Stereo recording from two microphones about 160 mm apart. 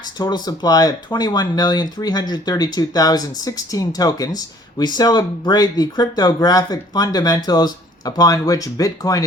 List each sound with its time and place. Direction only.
0.2 s speech: 25° left (ahead or behind)